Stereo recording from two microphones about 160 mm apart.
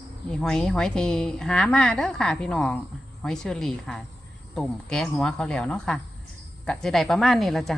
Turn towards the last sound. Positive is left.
turn(degrees=0)  # may be behind; listen again after turning